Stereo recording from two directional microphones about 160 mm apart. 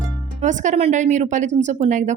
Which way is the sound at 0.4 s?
50° right (ahead or behind).